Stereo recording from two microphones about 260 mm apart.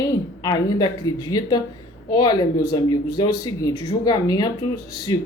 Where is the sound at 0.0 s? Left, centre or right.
Centre.